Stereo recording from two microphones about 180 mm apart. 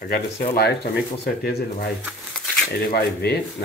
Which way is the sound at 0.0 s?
55° left (ahead or behind).